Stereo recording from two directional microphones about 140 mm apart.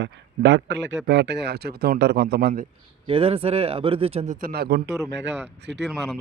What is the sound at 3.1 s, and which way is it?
Speech, 40° right (ahead or behind).